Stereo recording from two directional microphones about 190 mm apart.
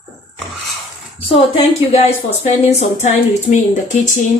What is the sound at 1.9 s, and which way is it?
A woman's voice, 35° left (ahead or behind).